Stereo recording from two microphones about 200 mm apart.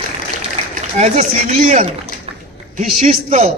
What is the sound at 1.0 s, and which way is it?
A man's voice, 35° right (ahead or behind).